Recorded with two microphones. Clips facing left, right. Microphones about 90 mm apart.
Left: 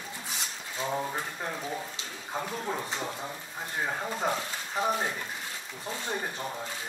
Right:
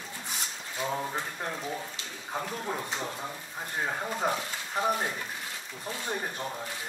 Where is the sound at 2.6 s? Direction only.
5° left (ahead or behind).